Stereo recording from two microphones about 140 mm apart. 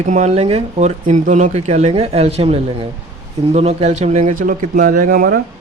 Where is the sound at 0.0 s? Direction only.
60° right (ahead or behind); by 5.4 s 85° right.